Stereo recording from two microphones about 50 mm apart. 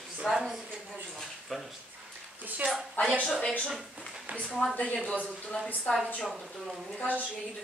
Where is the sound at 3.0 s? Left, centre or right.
Left.